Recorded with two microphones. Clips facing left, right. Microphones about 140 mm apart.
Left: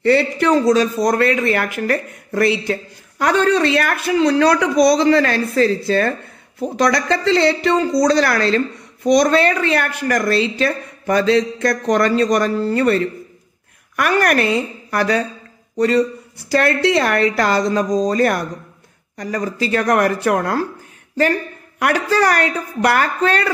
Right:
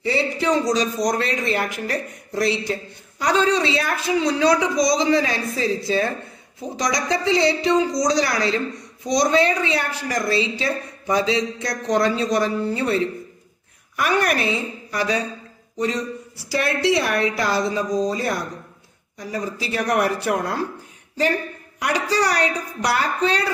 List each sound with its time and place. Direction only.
0.0 s speech: 65° left (ahead or behind)
17.7 s speech: 85° left; by 20.5 s 60° left (ahead or behind)
21.7 s speech: 55° left (ahead or behind)